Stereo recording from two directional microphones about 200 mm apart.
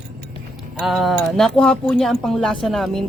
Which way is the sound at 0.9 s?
Centre (ahead or behind).